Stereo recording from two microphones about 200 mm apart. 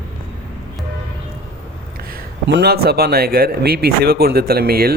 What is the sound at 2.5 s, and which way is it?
Speech, 55° right (ahead or behind).